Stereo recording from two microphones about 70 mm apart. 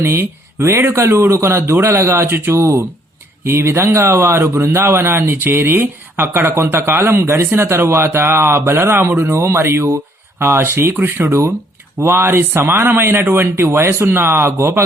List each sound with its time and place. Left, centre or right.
0.0 s speech: right
0.8 s a man's voice: right